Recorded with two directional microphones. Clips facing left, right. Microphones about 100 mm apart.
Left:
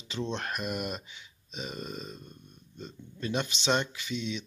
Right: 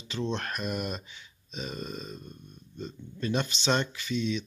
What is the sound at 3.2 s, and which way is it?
Speech, 10° left (ahead or behind).